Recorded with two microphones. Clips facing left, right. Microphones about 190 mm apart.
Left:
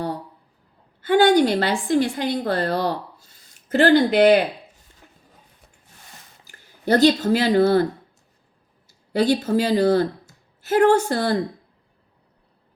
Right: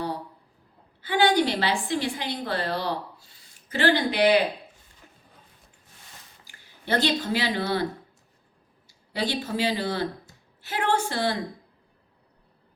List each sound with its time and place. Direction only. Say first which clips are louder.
1.0 s a woman's voice: left 6 dB; 45° left (ahead or behind)
6.5 s speech: left 8 dB; 40° left (ahead or behind)
8.9 s a woman's voice: left 10 dB; 45° left (ahead or behind)